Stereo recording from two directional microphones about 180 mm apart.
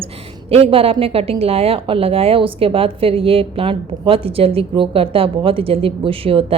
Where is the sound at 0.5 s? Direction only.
30° right (ahead or behind).